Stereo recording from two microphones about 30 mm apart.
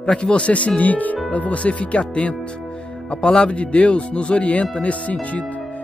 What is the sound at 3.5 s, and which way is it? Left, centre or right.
Speech, left.